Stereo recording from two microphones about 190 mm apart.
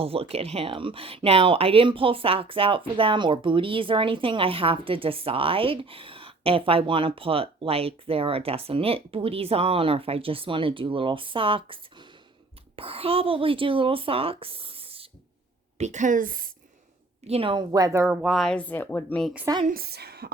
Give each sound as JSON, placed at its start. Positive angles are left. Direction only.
{"t": 0.0, "sound": "a woman's voice", "side_deg": -30}
{"t": 17.2, "sound": "speech", "side_deg": -30}
{"t": 19.6, "sound": "a woman's voice", "side_deg": -50}